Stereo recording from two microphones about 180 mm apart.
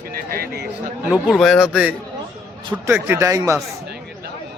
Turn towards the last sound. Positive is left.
turn(degrees=-15)  # may be behind; listen again after turning